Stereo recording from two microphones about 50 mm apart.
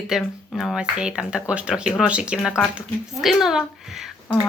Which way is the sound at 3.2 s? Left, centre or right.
Centre.